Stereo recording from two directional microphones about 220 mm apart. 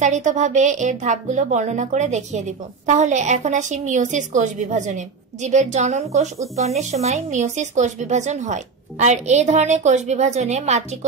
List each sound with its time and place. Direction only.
0.0 s speech: 35° right (ahead or behind)